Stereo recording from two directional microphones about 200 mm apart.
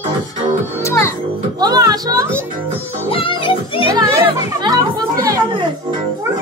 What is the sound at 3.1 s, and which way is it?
Music, 25° left (ahead or behind).